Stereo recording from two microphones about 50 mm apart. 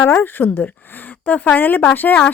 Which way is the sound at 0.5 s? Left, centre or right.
Left.